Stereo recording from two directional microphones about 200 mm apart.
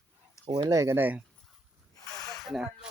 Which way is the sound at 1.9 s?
15° left (ahead or behind).